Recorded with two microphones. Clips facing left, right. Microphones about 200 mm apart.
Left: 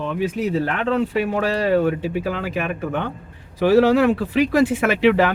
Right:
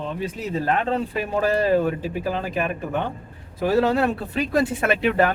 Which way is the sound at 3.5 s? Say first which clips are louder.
Left 5 dB; 85° left.